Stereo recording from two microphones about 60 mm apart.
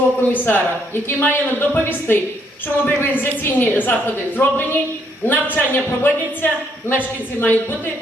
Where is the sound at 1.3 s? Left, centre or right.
Left.